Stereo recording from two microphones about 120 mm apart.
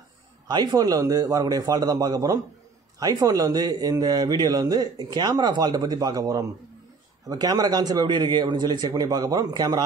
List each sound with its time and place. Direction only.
0.5 s a man's voice: 35° right (ahead or behind)